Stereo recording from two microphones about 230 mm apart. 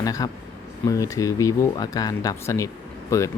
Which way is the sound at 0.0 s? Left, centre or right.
Centre.